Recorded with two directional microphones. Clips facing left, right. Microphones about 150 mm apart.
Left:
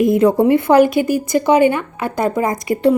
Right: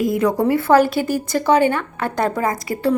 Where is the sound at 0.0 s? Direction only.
25° left (ahead or behind).